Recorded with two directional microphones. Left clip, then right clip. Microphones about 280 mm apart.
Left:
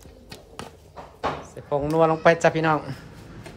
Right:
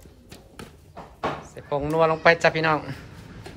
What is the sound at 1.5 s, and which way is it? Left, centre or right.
A man's voice, centre.